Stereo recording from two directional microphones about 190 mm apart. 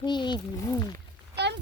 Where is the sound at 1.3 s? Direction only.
65° right (ahead or behind).